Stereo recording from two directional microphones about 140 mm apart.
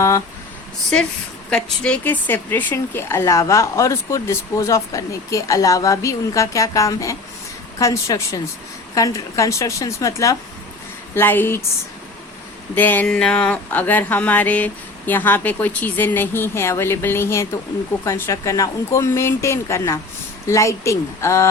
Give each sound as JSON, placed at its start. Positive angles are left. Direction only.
{"t": 1.5, "sound": "speech", "side_deg": 5}
{"t": 12.7, "sound": "speech", "side_deg": 15}